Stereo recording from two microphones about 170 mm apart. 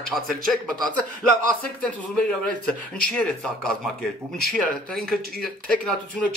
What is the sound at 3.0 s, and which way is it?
Speech, 5° left (ahead or behind).